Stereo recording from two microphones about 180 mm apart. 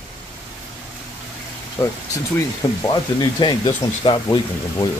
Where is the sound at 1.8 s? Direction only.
15° left (ahead or behind).